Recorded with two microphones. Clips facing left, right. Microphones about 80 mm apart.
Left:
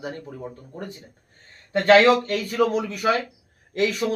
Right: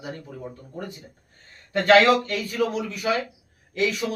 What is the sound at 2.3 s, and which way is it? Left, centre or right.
Speech, left.